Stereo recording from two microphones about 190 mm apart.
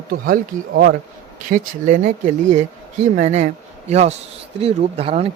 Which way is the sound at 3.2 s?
40° right (ahead or behind).